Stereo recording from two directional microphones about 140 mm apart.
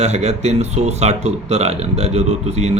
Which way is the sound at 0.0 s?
50° right (ahead or behind).